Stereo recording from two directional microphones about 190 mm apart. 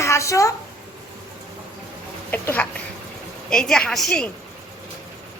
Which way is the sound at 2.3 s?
10° left (ahead or behind).